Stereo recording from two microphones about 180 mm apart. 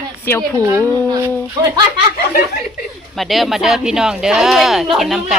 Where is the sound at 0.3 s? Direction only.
15° left (ahead or behind).